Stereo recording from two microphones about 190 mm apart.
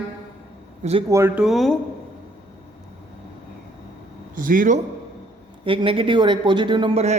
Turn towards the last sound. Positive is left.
turn(degrees=-35)  # may be behind; listen again after turning